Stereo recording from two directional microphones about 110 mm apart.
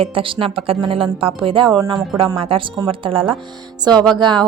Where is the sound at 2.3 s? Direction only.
55° right (ahead or behind).